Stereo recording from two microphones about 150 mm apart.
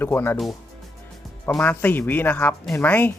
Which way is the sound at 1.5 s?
10° left (ahead or behind).